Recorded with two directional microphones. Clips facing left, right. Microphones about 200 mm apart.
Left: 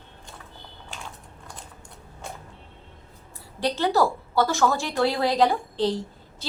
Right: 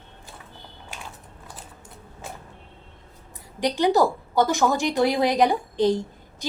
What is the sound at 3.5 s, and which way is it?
A woman's voice, 15° right (ahead or behind).